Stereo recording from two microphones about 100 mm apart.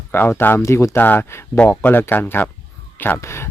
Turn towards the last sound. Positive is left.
turn(degrees=25)  # may be behind; listen again after turning